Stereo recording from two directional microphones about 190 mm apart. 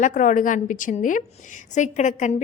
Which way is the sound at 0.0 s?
40° left (ahead or behind).